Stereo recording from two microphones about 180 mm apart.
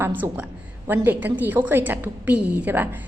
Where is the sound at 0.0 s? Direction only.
10° right (ahead or behind).